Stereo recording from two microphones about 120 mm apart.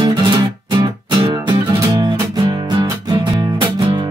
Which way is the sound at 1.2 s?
30° right (ahead or behind).